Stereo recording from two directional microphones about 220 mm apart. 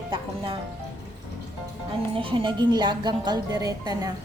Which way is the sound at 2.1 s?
25° right (ahead or behind).